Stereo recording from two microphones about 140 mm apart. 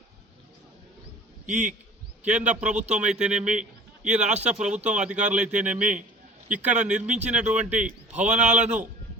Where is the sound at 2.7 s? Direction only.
55° right (ahead or behind).